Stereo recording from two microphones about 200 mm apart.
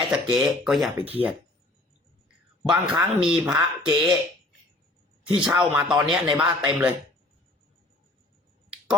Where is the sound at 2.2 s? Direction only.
5° right (ahead or behind).